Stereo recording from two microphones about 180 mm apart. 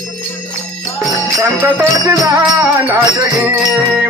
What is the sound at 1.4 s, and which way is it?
Music, 15° right (ahead or behind).